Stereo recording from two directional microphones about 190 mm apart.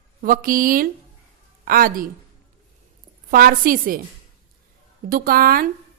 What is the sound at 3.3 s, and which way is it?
Speech, 50° right (ahead or behind).